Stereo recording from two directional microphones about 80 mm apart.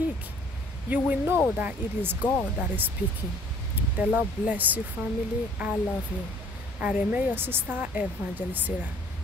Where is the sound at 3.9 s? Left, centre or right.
Right.